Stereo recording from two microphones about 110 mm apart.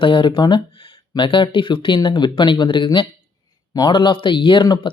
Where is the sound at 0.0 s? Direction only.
50° left (ahead or behind).